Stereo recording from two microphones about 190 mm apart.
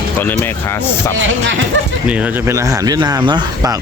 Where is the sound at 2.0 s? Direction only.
5° right (ahead or behind).